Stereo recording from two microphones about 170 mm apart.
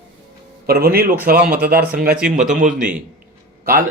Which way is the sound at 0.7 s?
65° right (ahead or behind).